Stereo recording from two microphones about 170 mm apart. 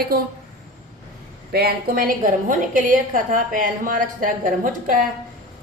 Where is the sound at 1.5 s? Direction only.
65° right (ahead or behind).